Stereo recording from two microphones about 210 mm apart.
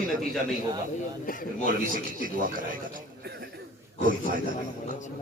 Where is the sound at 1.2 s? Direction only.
40° left (ahead or behind).